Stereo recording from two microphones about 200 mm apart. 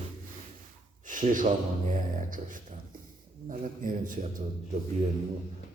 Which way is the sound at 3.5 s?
40° right (ahead or behind).